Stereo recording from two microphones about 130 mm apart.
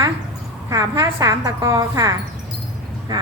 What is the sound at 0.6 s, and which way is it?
A woman's voice, 25° right (ahead or behind).